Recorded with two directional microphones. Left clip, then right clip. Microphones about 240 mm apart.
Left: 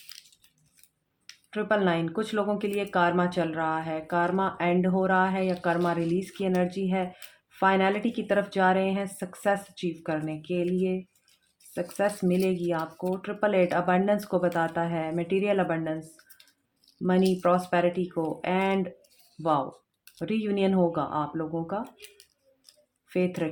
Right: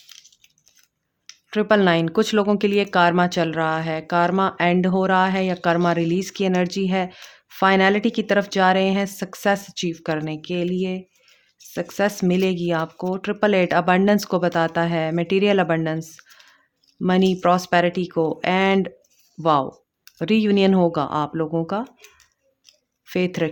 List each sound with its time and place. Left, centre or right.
1.5 s speech: right
23.0 s speech: right